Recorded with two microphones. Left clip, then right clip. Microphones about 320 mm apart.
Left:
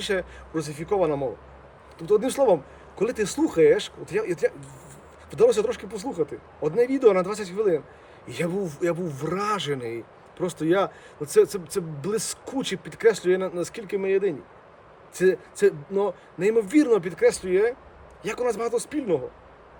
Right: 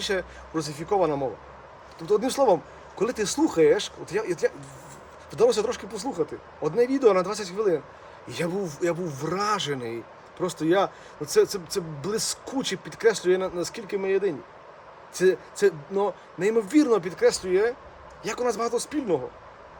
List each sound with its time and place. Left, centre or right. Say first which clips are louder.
0.0 s speech: left 1 dB; centre